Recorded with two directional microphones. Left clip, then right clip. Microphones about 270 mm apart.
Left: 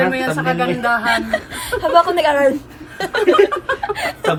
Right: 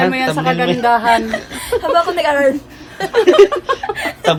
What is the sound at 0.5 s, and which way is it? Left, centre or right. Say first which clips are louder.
Speech: right 2 dB; centre.